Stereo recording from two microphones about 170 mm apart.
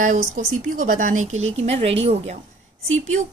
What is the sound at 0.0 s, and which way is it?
A woman's voice, 45° right (ahead or behind).